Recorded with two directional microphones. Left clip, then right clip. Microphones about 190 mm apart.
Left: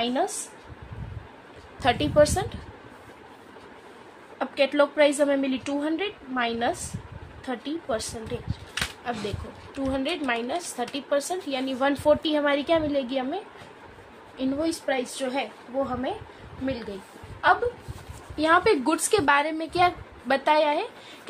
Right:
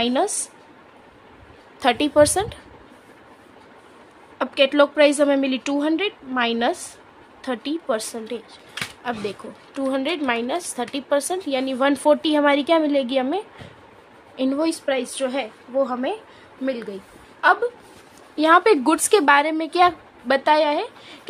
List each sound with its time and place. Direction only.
0.0 s speech: 45° right (ahead or behind)
1.8 s a woman's voice: 40° right (ahead or behind)
4.4 s a woman's voice: 40° right (ahead or behind)
17.4 s a woman's voice: 40° right (ahead or behind); by 21.2 s 25° right (ahead or behind)